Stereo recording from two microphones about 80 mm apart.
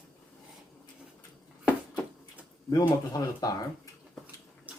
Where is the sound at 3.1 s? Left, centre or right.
Left.